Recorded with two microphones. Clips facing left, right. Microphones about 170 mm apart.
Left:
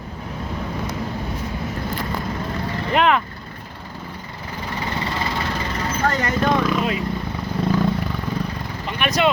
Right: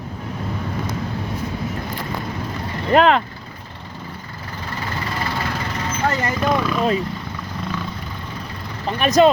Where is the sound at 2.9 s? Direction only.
35° right (ahead or behind).